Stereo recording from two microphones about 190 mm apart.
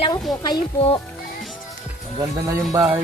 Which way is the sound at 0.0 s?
20° left (ahead or behind).